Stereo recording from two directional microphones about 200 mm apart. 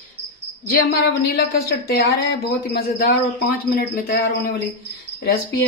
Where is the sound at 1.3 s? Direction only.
50° left (ahead or behind).